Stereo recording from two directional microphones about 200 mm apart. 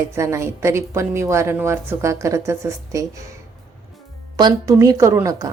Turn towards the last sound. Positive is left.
turn(degrees=-15)  # may be behind; listen again after turning